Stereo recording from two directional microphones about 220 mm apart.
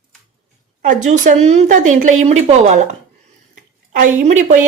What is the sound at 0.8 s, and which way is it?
Speech, 35° right (ahead or behind).